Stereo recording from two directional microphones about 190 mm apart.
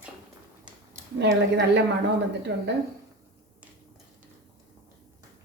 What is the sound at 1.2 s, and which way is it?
A woman's voice, 65° right (ahead or behind).